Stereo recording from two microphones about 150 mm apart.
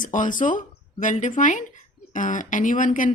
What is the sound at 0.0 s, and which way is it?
A woman's voice, 60° left (ahead or behind).